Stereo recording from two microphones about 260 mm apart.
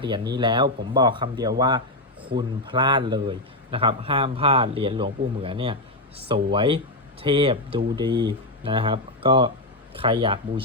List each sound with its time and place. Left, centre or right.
0.0 s a man's voice: centre